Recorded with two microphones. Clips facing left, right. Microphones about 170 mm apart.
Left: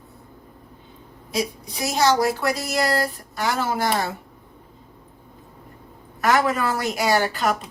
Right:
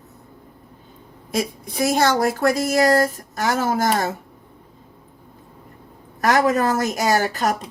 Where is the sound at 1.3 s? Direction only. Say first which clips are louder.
Right 2 dB; 50° right (ahead or behind).